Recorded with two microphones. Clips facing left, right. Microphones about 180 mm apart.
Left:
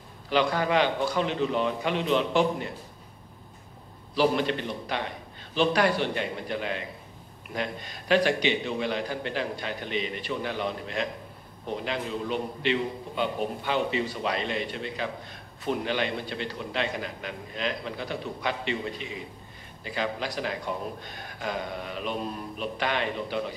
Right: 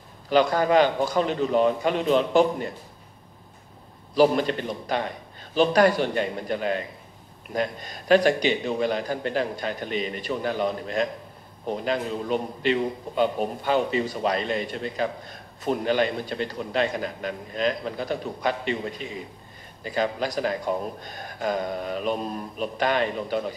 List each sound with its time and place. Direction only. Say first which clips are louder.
0.3 s a man's voice: right 5 dB; 45° right (ahead or behind)
4.1 s a man's voice: right 4 dB; 45° right (ahead or behind)
19.8 s a man's voice: right 5 dB; 45° right (ahead or behind)